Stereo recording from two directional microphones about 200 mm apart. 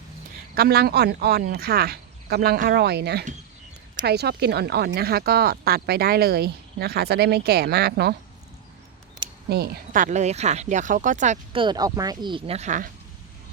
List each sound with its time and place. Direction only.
0.5 s speech: 50° right (ahead or behind)
9.5 s speech: 50° right (ahead or behind)
11.5 s speech: 25° right (ahead or behind); by 12.9 s 40° right (ahead or behind)